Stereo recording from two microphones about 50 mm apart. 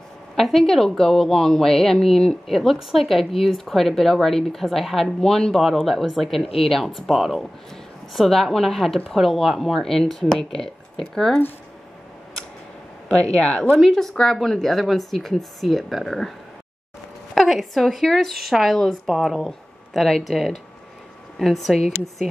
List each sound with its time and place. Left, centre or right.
0.4 s a woman's voice: centre
13.1 s speech: centre
13.7 s a woman's voice: centre